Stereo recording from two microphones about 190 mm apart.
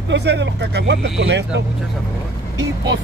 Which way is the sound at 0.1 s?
65° right (ahead or behind).